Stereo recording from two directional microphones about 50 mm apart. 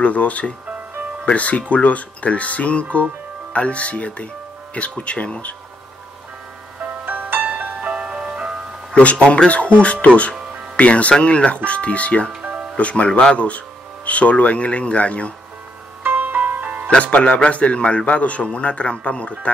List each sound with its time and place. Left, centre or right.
0.0 s a man's voice: left
6.8 s music: right; by 8.5 s centre
8.9 s a man's voice: left
16.0 s music: right
16.9 s a man's voice: left